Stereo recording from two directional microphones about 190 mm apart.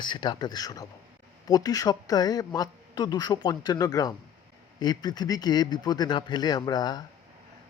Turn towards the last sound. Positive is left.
turn(degrees=20)  # may be behind; listen again after turning